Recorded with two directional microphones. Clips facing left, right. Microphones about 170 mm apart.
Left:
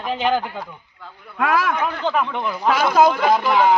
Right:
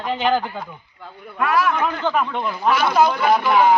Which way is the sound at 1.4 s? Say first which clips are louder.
Even; 90° left.